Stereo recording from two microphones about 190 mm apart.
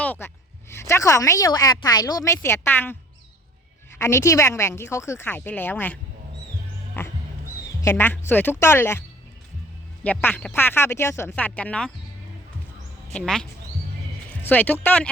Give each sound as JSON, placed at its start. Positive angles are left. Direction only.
{"t": 0.0, "sound": "a woman's voice", "side_deg": 10}
{"t": 3.9, "sound": "a woman's voice", "side_deg": 15}
{"t": 7.0, "sound": "music", "side_deg": 10}
{"t": 7.8, "sound": "a woman's voice", "side_deg": 15}
{"t": 13.1, "sound": "a woman's voice", "side_deg": 5}